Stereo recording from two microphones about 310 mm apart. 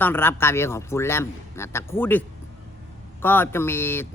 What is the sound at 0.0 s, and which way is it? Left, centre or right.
A man's voice, centre.